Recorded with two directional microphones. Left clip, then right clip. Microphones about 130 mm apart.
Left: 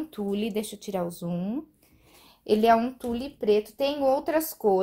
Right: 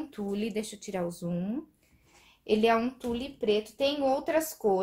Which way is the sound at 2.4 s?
70° left (ahead or behind).